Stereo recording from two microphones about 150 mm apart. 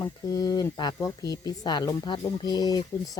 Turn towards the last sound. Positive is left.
turn(degrees=25)  # may be behind; listen again after turning